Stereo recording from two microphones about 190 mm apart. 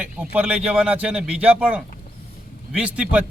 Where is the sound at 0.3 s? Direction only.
5° right (ahead or behind).